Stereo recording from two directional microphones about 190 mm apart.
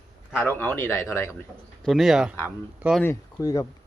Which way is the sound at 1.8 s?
Centre (ahead or behind).